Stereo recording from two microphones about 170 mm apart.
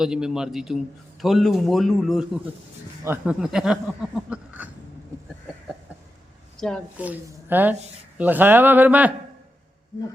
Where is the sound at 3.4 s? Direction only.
5° right (ahead or behind).